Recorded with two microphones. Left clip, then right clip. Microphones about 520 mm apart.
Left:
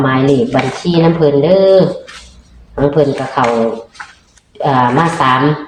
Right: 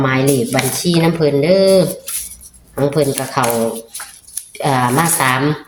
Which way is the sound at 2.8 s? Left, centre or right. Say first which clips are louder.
Left 4 dB; right.